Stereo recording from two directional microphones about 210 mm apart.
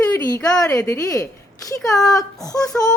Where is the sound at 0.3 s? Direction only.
15° left (ahead or behind).